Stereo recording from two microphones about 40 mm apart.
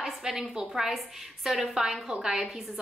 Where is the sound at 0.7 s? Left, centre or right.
Centre.